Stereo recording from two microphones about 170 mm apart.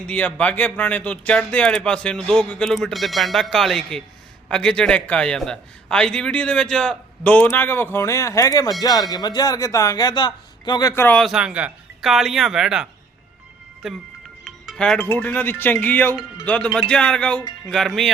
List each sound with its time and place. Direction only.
0.0 s a man's voice: 5° left (ahead or behind)
14.4 s music: centre (ahead or behind)
15.1 s a man's voice: 10° left (ahead or behind)